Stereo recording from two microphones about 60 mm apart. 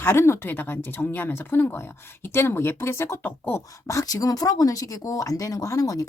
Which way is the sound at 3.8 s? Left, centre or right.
Left.